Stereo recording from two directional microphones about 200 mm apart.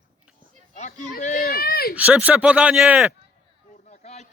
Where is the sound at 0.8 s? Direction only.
35° left (ahead or behind).